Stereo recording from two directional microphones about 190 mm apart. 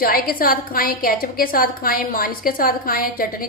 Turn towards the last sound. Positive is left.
turn(degrees=50)  # may be behind; listen again after turning